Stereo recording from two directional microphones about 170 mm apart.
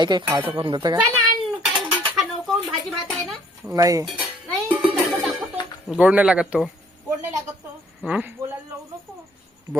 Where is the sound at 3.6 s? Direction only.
20° right (ahead or behind).